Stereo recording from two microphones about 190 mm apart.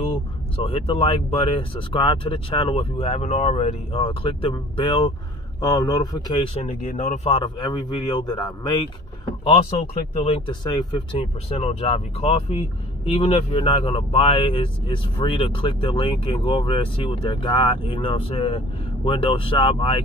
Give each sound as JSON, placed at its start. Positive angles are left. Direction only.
{"t": 0.0, "sound": "speech", "side_deg": 30}